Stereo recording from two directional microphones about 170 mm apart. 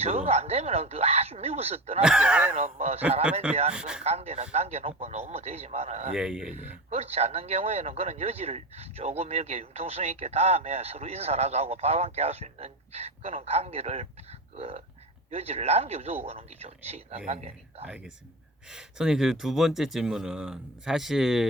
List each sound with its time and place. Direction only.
0.0 s a man's voice: 40° right (ahead or behind)
2.0 s speech: 5° right (ahead or behind)
2.6 s a man's voice: 40° right (ahead or behind)
3.7 s speech: 5° right (ahead or behind)
4.0 s a man's voice: 35° right (ahead or behind)
6.1 s speech: 5° right (ahead or behind)
6.9 s a man's voice: 40° right (ahead or behind)
17.8 s speech: 5° right (ahead or behind)